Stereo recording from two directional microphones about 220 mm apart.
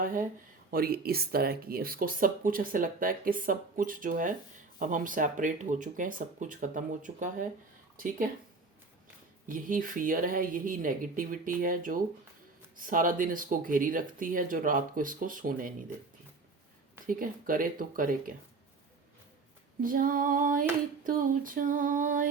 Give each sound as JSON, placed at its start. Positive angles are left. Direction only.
{"t": 0.7, "sound": "speech", "side_deg": -45}
{"t": 9.5, "sound": "speech", "side_deg": -40}
{"t": 17.1, "sound": "speech", "side_deg": -40}
{"t": 19.8, "sound": "speech", "side_deg": -40}